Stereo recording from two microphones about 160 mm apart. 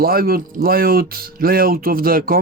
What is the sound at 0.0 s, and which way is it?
Speech, 70° right (ahead or behind).